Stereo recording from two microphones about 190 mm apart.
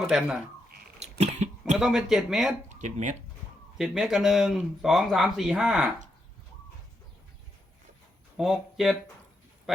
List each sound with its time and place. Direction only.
0.0 s speech: 5° right (ahead or behind)
1.2 s a sound: 35° right (ahead or behind)
1.8 s speech: centre (ahead or behind)
2.8 s speech: 40° right (ahead or behind)
3.8 s speech: 5° right (ahead or behind)
8.4 s speech: centre (ahead or behind)